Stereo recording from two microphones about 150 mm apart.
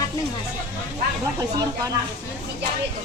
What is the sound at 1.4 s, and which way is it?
Speech, 25° right (ahead or behind).